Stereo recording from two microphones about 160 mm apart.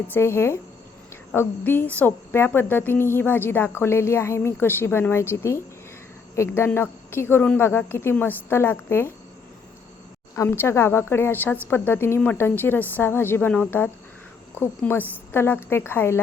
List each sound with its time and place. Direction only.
0.1 s a woman's voice: 15° left (ahead or behind)
10.3 s a woman's voice: 15° left (ahead or behind)